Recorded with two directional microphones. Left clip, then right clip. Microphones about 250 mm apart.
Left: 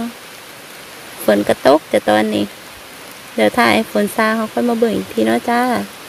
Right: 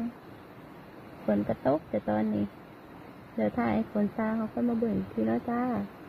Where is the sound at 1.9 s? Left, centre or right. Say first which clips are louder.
Left 17 dB; left.